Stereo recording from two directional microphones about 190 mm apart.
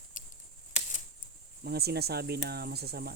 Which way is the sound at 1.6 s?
55° right (ahead or behind).